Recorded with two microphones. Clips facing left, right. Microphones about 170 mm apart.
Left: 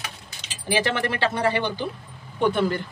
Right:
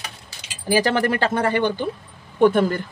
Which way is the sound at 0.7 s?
40° right (ahead or behind).